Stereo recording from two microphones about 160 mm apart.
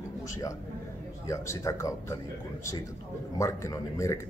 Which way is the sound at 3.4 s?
20° left (ahead or behind).